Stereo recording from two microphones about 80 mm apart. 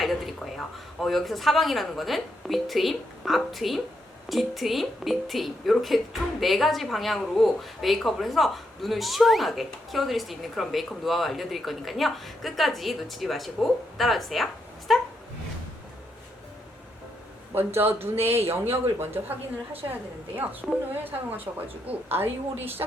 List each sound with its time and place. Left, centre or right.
0.0 s a woman's voice: centre
17.5 s a man's voice: right